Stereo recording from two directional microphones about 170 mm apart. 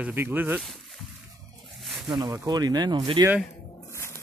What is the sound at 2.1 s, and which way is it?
Speech, 20° right (ahead or behind).